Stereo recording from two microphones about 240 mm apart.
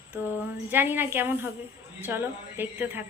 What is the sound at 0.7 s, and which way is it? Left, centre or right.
A woman's voice, centre.